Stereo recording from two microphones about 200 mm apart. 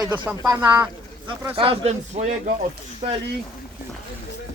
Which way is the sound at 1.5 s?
30° right (ahead or behind).